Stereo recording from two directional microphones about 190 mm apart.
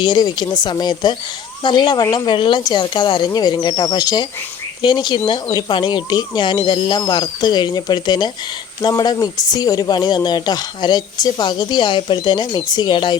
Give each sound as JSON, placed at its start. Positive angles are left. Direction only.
{"t": 0.0, "sound": "speech", "side_deg": 20}